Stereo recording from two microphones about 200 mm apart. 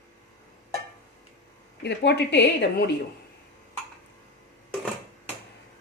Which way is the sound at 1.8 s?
55° left (ahead or behind).